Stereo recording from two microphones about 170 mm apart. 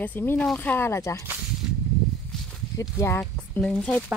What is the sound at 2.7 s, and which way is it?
A woman's voice, 15° left (ahead or behind).